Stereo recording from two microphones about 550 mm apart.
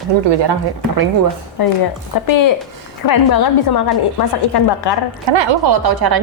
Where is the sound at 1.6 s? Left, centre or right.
Left.